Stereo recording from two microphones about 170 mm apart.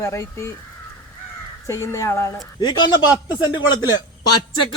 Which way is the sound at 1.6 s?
15° left (ahead or behind).